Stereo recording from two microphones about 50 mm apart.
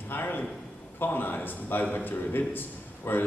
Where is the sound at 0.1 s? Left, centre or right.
Left.